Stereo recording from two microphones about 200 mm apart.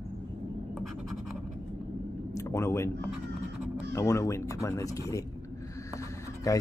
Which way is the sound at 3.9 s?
15° left (ahead or behind).